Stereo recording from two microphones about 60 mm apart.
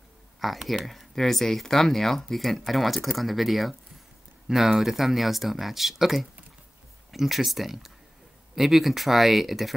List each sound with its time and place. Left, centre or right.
0.4 s speech: centre